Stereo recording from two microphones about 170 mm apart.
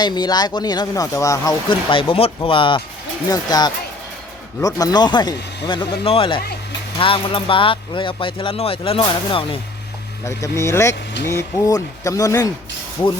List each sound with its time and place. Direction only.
0.0 s speech: 25° left (ahead or behind)
1.9 s speech: 30° left (ahead or behind)
10.2 s speech: 20° left (ahead or behind)